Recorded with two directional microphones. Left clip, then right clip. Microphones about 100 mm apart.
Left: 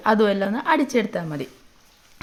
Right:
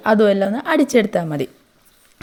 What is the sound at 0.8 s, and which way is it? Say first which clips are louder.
Speech: right 7 dB; 75° right (ahead or behind).